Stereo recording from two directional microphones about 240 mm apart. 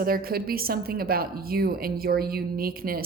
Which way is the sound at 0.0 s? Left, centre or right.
Right.